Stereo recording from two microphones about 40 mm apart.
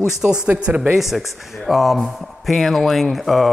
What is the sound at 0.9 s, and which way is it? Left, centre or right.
Speech, centre.